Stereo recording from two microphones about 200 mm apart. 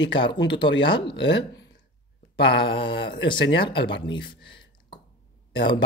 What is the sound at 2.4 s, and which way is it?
Speech, 25° left (ahead or behind).